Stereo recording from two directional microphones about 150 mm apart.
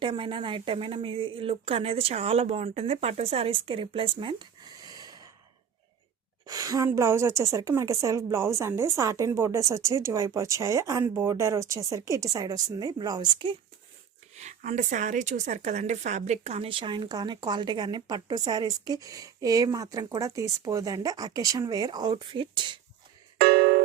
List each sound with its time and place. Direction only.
0.0 s a woman's voice: 35° right (ahead or behind)
6.4 s speech: 25° right (ahead or behind)
14.3 s a woman's voice: 50° right (ahead or behind); by 22.8 s 30° right (ahead or behind)
23.4 s music: 90° right